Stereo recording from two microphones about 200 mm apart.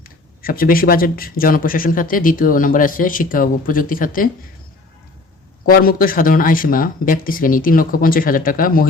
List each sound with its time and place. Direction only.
0.0 s speech: 45° left (ahead or behind)
5.6 s speech: 45° left (ahead or behind)